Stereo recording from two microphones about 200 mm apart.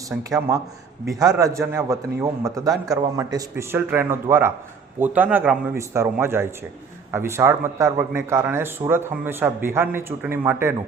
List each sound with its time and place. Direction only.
0.2 s speech: 15° right (ahead or behind)